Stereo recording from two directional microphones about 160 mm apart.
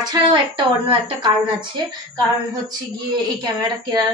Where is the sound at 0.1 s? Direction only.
30° right (ahead or behind).